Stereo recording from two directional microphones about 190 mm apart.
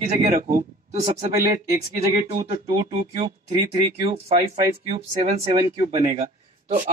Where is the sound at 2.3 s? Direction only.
45° right (ahead or behind).